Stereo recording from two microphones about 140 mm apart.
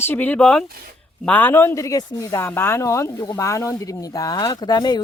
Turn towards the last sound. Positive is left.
turn(degrees=30)  # may be behind; listen again after turning